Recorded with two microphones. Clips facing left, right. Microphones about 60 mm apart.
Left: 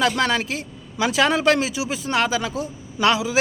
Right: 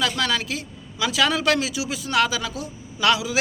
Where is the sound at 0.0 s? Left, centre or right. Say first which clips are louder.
Left 3 dB; left.